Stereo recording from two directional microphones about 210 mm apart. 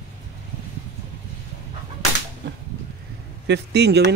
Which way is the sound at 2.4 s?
55° right (ahead or behind).